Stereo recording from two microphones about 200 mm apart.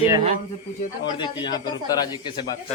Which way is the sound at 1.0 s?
20° left (ahead or behind).